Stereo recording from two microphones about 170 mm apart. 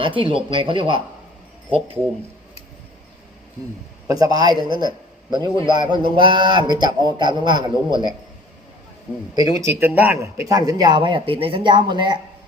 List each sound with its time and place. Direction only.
0.0 s speech: 30° right (ahead or behind)
4.1 s a man's voice: 20° right (ahead or behind)
9.3 s speech: 20° right (ahead or behind)
10.5 s a man's voice: 20° right (ahead or behind)